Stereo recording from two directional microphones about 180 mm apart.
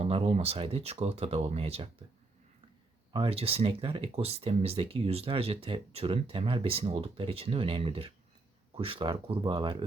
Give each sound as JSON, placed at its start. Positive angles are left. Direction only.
{"t": 0.0, "sound": "speech", "side_deg": -35}
{"t": 3.1, "sound": "speech", "side_deg": -30}